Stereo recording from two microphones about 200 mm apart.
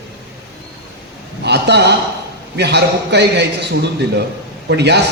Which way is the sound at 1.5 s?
55° right (ahead or behind).